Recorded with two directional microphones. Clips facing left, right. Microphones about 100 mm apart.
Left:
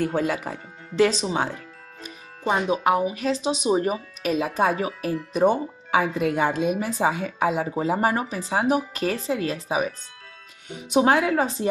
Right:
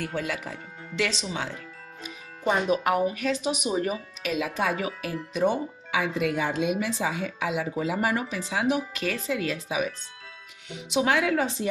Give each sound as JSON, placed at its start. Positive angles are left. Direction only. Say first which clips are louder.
{"t": 0.0, "sound": "speech", "louder": "left 7 dB", "side_deg": 40}
{"t": 2.4, "sound": "speech", "louder": "left 2 dB", "side_deg": 20}